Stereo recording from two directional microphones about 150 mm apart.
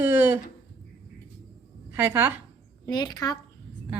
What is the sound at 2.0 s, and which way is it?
Speech, 15° right (ahead or behind).